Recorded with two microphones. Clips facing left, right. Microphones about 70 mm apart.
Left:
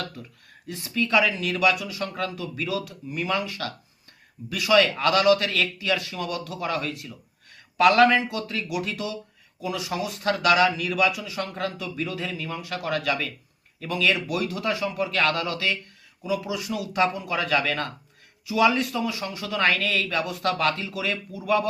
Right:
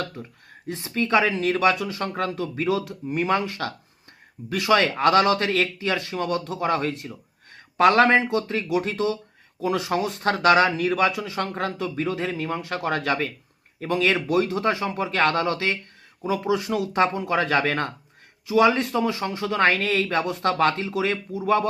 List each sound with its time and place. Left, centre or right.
0.0 s a man's voice: right